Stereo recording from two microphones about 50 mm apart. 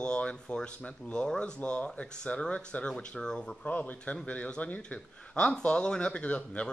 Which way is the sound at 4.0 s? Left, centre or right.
Left.